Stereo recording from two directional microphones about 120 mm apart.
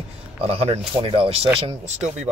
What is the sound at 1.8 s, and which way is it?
Speech, 70° right (ahead or behind).